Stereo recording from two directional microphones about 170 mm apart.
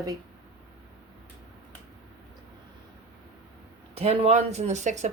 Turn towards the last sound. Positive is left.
turn(degrees=-45)  # may be behind; listen again after turning